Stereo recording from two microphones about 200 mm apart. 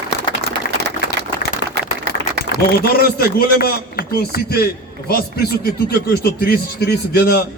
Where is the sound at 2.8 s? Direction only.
50° left (ahead or behind).